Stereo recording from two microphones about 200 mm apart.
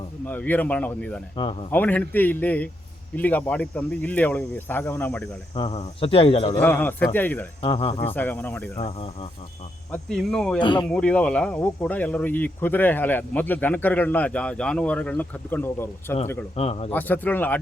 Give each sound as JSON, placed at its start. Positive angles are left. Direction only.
{"t": 0.3, "sound": "speech", "side_deg": 10}
{"t": 1.4, "sound": "speech", "side_deg": 25}
{"t": 1.7, "sound": "speech", "side_deg": 10}
{"t": 5.5, "sound": "speech", "side_deg": 30}
{"t": 6.6, "sound": "speech", "side_deg": 10}
{"t": 7.6, "sound": "speech", "side_deg": 25}
{"t": 8.0, "sound": "speech", "side_deg": 10}
{"t": 8.8, "sound": "speech", "side_deg": 30}
{"t": 9.9, "sound": "speech", "side_deg": 5}
{"t": 10.6, "sound": "speech", "side_deg": 25}
{"t": 10.8, "sound": "speech", "side_deg": 5}
{"t": 16.6, "sound": "speech", "side_deg": 30}
{"t": 16.9, "sound": "speech", "side_deg": 10}